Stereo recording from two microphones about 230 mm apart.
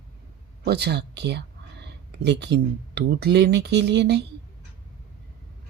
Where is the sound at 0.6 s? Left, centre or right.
Right.